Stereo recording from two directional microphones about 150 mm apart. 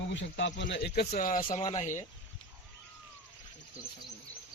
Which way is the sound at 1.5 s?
50° left (ahead or behind).